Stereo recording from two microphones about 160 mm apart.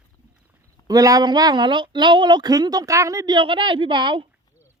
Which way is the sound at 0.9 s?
20° right (ahead or behind).